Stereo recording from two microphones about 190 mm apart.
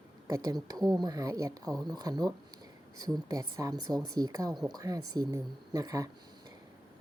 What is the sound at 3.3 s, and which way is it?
Speech, 20° right (ahead or behind).